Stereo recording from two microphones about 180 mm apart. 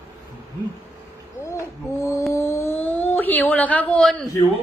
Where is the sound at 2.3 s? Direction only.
15° left (ahead or behind).